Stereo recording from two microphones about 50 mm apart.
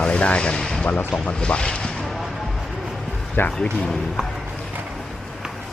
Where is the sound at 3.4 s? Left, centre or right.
Left.